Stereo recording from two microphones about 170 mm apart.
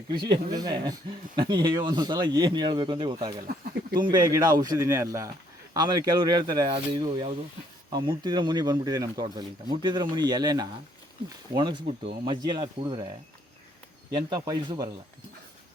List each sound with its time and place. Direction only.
0.1 s speech: 25° right (ahead or behind)
14.1 s speech: 25° right (ahead or behind)